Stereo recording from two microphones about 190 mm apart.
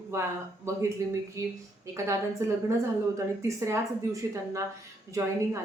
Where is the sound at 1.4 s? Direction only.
15° right (ahead or behind).